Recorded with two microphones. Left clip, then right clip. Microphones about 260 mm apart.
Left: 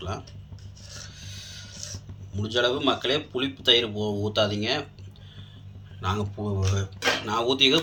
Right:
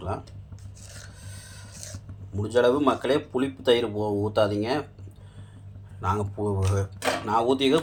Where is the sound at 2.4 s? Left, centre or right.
Centre.